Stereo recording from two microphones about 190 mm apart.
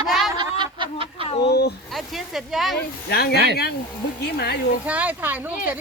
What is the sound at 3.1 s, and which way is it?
Speech, 55° left (ahead or behind).